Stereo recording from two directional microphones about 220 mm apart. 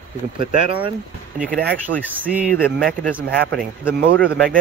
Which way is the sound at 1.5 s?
45° right (ahead or behind).